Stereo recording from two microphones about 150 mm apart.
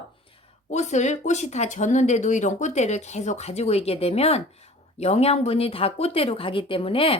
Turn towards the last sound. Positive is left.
turn(degrees=35)  # may be behind; listen again after turning